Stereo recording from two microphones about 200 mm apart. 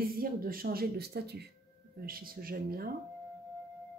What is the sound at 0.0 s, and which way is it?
Speech, 45° right (ahead or behind).